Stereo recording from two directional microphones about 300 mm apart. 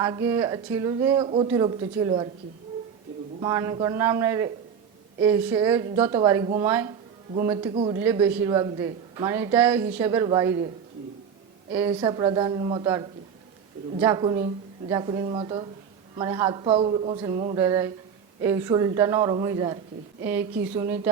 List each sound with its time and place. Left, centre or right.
0.0 s a woman's voice: centre
3.4 s a woman's voice: centre
8.0 s a woman's voice: centre
11.7 s a woman's voice: centre